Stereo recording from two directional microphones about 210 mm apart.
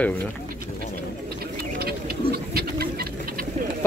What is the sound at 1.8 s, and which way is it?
Bird, 45° right (ahead or behind).